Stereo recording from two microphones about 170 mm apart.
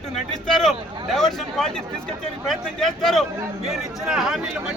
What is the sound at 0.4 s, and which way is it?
Speech, centre (ahead or behind).